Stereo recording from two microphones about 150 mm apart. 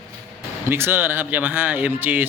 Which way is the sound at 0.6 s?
15° right (ahead or behind).